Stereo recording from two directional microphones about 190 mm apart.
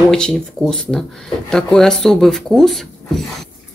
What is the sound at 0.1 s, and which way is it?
Speech, centre (ahead or behind).